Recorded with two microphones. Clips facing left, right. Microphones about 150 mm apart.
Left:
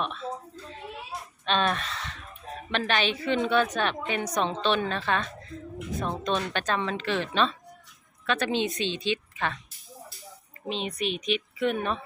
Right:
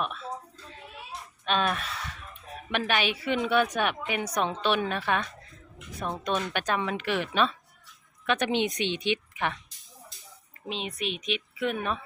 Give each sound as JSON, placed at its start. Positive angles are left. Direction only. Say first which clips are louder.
{"t": 0.0, "sound": "a sound", "louder": "left 1 dB", "side_deg": -5}
{"t": 1.5, "sound": "a woman's voice", "louder": "left 1 dB", "side_deg": -5}
{"t": 6.2, "sound": "a woman's voice", "louder": "right 1 dB", "side_deg": -10}
{"t": 10.7, "sound": "speech", "louder": "left 3 dB", "side_deg": 0}